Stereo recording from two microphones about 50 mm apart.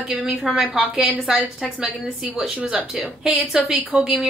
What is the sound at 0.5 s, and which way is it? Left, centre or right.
Speech, centre.